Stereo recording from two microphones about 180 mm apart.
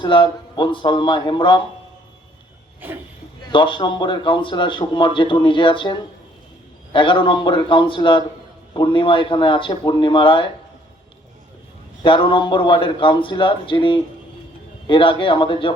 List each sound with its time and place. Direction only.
0.0 s a man's voice: 25° left (ahead or behind)
3.5 s a man's voice: 25° left (ahead or behind)
12.0 s a man's voice: 25° left (ahead or behind)